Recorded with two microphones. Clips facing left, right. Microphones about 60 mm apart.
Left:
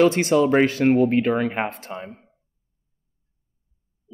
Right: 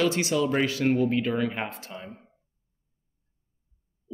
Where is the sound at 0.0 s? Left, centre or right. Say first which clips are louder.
Left 7 dB; left.